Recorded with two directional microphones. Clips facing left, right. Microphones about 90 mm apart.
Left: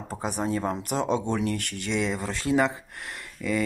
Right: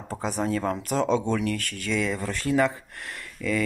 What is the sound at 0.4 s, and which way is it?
Speech, 25° left (ahead or behind).